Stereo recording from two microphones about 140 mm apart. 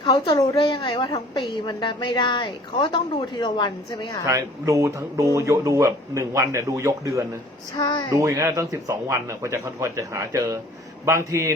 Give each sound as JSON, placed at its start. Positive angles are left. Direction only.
{"t": 0.0, "sound": "a woman's voice", "side_deg": 30}
{"t": 4.3, "sound": "speech", "side_deg": -20}
{"t": 7.8, "sound": "speech", "side_deg": 30}
{"t": 8.1, "sound": "speech", "side_deg": -20}